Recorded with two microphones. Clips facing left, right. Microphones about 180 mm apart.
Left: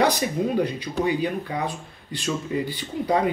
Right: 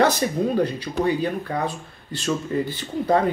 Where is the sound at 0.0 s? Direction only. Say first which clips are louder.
Right 2 dB; 15° left (ahead or behind).